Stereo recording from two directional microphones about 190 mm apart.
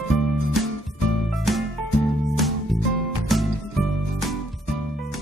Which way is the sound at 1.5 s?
Centre (ahead or behind).